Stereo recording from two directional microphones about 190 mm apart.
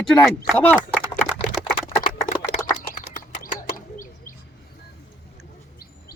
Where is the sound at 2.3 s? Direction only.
40° left (ahead or behind).